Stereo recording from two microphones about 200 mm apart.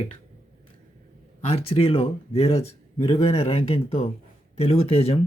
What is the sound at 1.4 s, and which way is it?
Speech, 30° left (ahead or behind).